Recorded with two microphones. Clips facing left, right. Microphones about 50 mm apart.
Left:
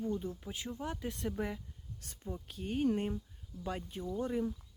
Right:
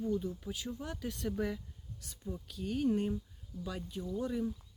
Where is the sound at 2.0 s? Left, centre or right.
Left.